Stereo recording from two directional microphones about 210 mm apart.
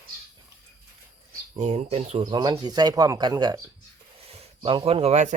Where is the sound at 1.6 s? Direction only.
30° right (ahead or behind).